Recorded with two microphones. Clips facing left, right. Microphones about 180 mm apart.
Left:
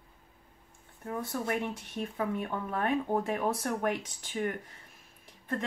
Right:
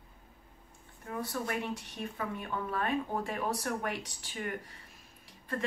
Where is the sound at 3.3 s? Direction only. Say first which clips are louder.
Left 3 dB; 50° left (ahead or behind).